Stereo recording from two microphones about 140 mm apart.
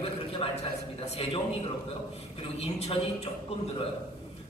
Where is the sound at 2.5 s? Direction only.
50° left (ahead or behind).